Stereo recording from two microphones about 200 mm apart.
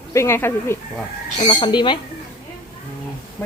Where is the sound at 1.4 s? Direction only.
20° left (ahead or behind).